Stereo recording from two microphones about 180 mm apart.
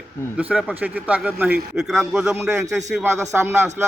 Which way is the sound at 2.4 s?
15° right (ahead or behind).